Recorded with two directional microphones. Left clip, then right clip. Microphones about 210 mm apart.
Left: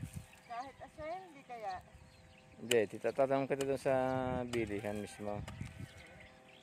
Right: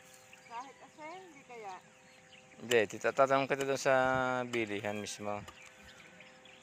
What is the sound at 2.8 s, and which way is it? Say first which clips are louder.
Speech: right 4 dB; 10° left (ahead or behind).